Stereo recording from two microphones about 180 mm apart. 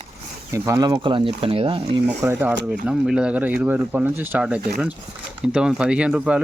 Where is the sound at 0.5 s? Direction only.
15° right (ahead or behind).